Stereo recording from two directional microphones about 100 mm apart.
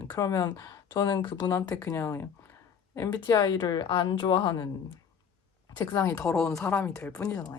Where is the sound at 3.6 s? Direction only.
55° left (ahead or behind).